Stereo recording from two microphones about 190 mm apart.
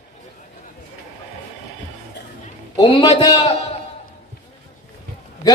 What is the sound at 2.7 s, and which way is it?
Speech, 25° left (ahead or behind).